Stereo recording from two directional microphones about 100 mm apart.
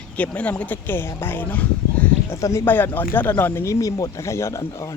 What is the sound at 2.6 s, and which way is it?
Speech, 20° left (ahead or behind).